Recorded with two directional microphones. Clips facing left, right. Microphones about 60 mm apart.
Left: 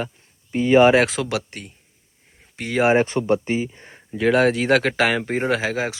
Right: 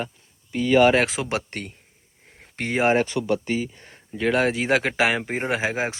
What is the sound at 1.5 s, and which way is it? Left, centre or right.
Speech, right.